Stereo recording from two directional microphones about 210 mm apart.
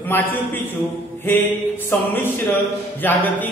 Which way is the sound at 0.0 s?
10° left (ahead or behind).